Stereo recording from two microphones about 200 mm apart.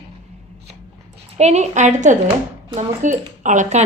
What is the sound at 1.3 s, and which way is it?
A woman's voice, 35° right (ahead or behind).